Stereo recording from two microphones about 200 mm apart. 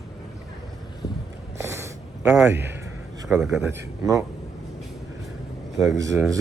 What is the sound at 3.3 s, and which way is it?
Speech, 5° right (ahead or behind).